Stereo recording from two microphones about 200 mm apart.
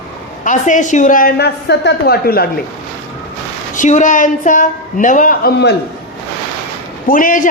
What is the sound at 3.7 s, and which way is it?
A woman's voice, 40° left (ahead or behind).